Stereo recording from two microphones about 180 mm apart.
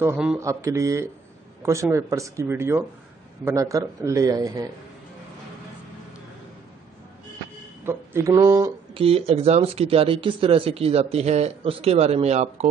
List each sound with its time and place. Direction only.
0.0 s speech: 5° right (ahead or behind)
7.8 s speech: 15° right (ahead or behind)
8.9 s speech: 30° right (ahead or behind)